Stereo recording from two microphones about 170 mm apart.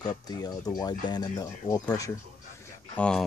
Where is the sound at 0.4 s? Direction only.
20° left (ahead or behind).